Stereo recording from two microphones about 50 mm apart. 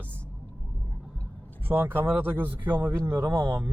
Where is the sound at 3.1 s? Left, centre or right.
Right.